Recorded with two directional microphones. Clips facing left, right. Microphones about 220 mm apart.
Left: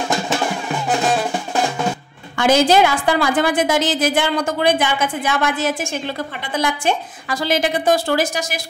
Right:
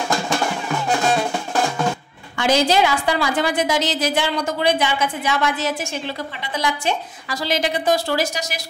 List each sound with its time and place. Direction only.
2.3 s a woman's voice: 50° left (ahead or behind)